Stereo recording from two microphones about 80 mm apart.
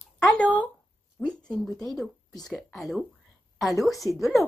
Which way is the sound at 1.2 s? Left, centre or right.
Centre.